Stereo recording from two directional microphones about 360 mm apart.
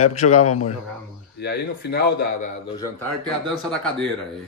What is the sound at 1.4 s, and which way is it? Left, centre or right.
A man's voice, left.